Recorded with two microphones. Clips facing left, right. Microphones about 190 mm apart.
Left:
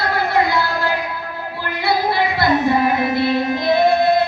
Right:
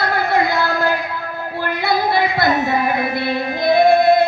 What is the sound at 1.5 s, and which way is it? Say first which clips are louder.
Child singing: right 1 dB; 50° right (ahead or behind).